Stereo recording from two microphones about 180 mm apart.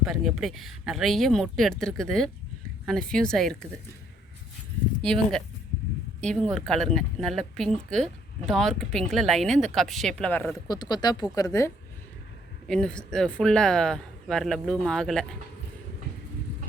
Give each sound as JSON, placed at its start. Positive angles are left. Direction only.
{"t": 0.0, "sound": "speech", "side_deg": 0}
{"t": 5.0, "sound": "speech", "side_deg": 5}
{"t": 10.7, "sound": "speech", "side_deg": 25}
{"t": 12.6, "sound": "speech", "side_deg": 5}